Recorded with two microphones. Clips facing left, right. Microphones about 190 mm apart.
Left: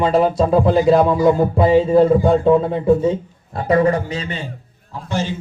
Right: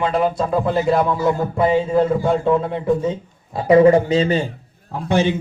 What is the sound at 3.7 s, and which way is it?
Speech, 25° right (ahead or behind).